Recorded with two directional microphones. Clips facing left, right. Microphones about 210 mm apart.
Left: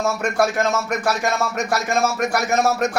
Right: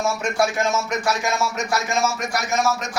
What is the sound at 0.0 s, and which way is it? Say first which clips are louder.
Speech: left 2 dB; 60° left (ahead or behind).